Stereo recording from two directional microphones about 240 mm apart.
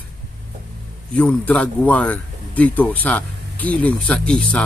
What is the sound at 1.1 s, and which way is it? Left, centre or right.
A man's voice, centre.